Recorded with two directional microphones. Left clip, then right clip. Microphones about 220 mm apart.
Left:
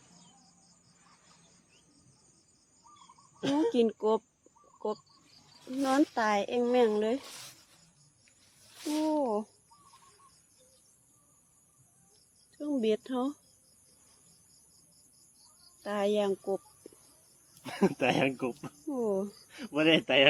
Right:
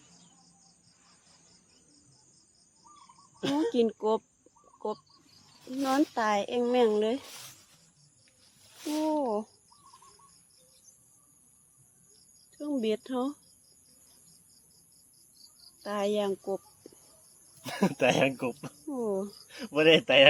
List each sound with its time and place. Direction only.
3.7 s speech: centre (ahead or behind)
5.6 s speech: centre (ahead or behind)
8.8 s speech: centre (ahead or behind)
12.5 s speech: centre (ahead or behind)
15.8 s speech: centre (ahead or behind)
17.6 s speech: 45° right (ahead or behind)
18.9 s speech: 10° left (ahead or behind)
19.5 s speech: 45° right (ahead or behind)